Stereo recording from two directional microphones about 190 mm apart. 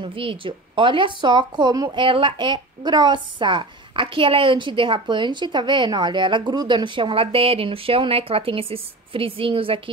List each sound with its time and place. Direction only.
0.0 s a woman's voice: 30° right (ahead or behind)